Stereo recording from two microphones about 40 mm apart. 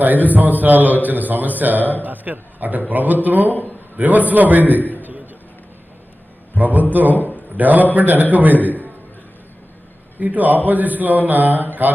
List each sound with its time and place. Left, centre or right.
0.0 s a man's voice: right
4.8 s a man's voice: left
5.0 s a sound: right
6.6 s a man's voice: right
10.2 s a man's voice: right